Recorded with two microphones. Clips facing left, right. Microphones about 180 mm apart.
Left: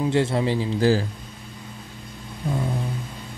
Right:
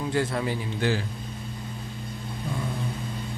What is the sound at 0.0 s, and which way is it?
Speech, 25° left (ahead or behind).